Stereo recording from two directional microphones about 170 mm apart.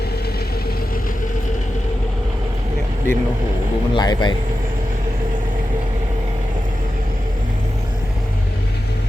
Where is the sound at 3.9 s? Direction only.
25° left (ahead or behind).